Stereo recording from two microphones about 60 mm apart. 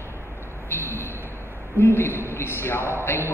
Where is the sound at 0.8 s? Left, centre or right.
Right.